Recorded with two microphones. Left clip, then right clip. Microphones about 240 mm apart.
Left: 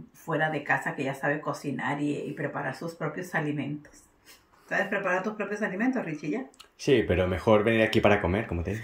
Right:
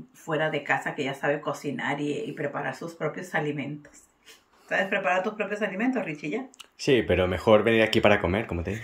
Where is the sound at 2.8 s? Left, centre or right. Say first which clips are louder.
Left 1 dB; right.